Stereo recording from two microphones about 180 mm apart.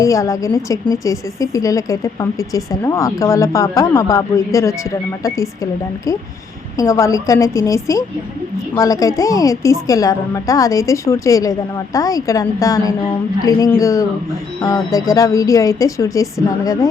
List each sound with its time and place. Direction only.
0.0 s a woman's voice: 20° left (ahead or behind)
6.7 s a woman's voice: 15° left (ahead or behind)